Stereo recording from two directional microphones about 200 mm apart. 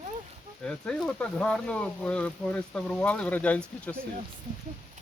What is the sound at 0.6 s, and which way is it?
Speech, 5° left (ahead or behind).